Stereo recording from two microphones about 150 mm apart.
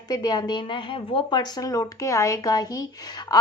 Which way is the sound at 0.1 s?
25° left (ahead or behind).